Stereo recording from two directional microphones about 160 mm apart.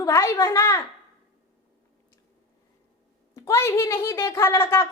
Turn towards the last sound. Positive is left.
turn(degrees=15)  # may be behind; listen again after turning